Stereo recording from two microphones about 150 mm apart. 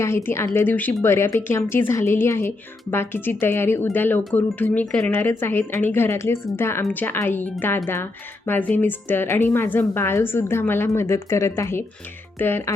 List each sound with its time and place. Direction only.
0.0 s speech: 15° left (ahead or behind)